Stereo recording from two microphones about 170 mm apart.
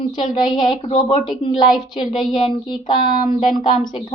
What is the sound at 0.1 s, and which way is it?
A woman's voice, 25° left (ahead or behind).